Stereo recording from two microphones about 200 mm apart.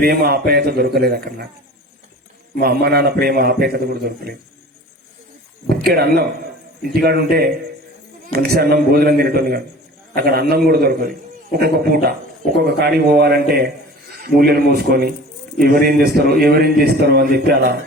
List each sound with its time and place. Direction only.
0.0 s a man's voice: 50° right (ahead or behind)
2.6 s a man's voice: 50° right (ahead or behind)
5.6 s a man's voice: 50° right (ahead or behind)